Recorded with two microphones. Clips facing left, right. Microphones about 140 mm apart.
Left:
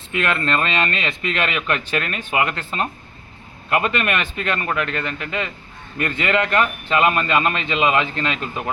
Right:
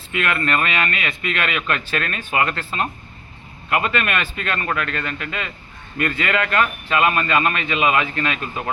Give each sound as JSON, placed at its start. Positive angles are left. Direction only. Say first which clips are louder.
{"t": 0.1, "sound": "speech", "louder": "left 1 dB", "side_deg": 25}